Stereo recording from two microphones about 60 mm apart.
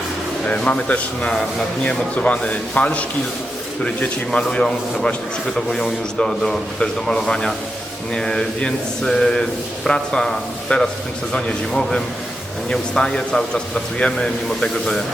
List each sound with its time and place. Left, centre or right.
0.4 s a man's voice: centre